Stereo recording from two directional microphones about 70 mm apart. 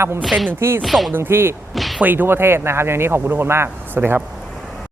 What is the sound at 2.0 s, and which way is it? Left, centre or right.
Speech, right.